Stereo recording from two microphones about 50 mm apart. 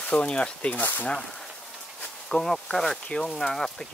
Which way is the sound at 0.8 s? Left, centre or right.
Left.